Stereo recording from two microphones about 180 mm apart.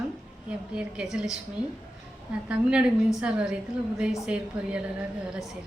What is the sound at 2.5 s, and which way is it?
A woman's voice, 5° right (ahead or behind).